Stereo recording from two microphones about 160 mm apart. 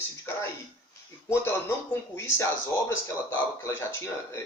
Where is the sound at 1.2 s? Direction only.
15° left (ahead or behind).